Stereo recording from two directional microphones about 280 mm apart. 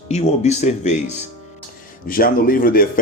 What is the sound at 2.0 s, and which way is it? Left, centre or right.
Speech, left.